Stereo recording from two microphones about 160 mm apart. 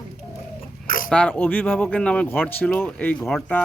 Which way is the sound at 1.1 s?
10° left (ahead or behind).